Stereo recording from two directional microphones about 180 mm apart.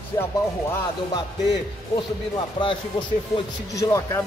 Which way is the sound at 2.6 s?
30° left (ahead or behind).